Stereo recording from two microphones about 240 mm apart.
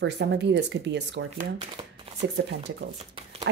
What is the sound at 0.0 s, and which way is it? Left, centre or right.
Speech, right.